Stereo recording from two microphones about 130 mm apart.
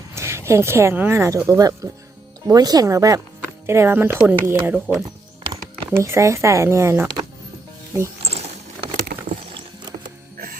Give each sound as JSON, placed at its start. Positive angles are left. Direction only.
{"t": 0.1, "sound": "speech", "side_deg": -20}
{"t": 8.2, "sound": "a sound", "side_deg": -55}
{"t": 10.3, "sound": "music", "side_deg": -90}